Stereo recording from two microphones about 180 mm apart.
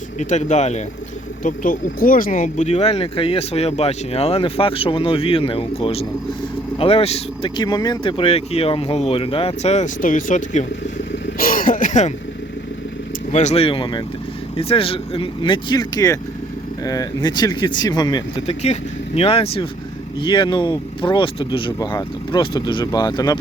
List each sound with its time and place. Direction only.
0.2 s speech: 40° left (ahead or behind)
11.3 s throat clearing: 50° left (ahead or behind)
13.3 s speech: 40° left (ahead or behind); by 18.2 s 25° left (ahead or behind)
18.4 s speech: 35° left (ahead or behind)